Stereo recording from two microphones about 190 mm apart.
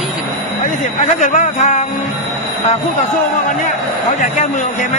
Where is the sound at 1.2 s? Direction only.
40° left (ahead or behind).